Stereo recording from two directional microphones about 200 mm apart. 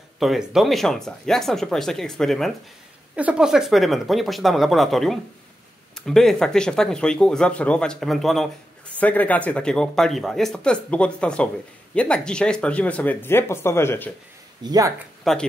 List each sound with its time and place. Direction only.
0.2 s speech: centre (ahead or behind)
14.6 s speech: 20° right (ahead or behind)
15.3 s speech: centre (ahead or behind)